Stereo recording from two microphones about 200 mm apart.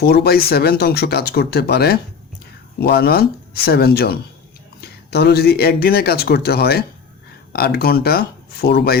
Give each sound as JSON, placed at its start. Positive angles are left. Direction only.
{"t": 0.0, "sound": "speech", "side_deg": 50}